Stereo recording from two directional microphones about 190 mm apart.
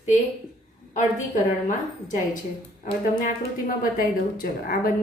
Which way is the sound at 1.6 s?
40° left (ahead or behind).